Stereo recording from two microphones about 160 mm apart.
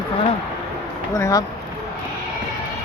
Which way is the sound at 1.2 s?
20° left (ahead or behind).